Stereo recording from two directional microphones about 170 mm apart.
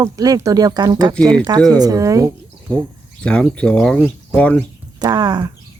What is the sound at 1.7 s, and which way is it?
Speech, 20° right (ahead or behind).